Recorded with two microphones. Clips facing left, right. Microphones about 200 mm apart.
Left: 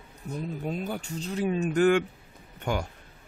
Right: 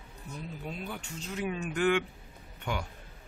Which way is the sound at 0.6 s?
45° left (ahead or behind).